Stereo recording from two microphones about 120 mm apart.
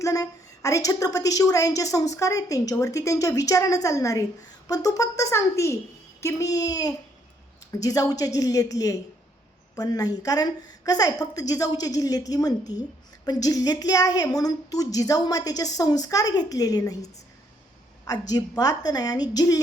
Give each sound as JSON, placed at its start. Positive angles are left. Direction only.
{"t": 0.0, "sound": "a woman's voice", "side_deg": 25}